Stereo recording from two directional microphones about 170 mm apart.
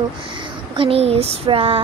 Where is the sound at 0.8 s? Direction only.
35° right (ahead or behind).